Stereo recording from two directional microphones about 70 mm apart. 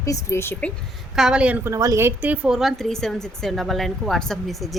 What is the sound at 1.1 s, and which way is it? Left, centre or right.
A woman's voice, centre.